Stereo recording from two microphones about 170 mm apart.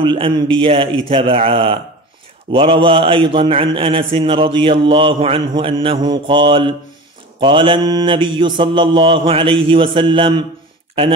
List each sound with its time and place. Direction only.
0.0 s a man's voice: 30° right (ahead or behind)
7.3 s mantra: 30° right (ahead or behind)